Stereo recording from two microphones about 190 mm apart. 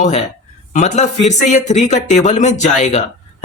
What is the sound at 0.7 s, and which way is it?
Speech, 40° left (ahead or behind).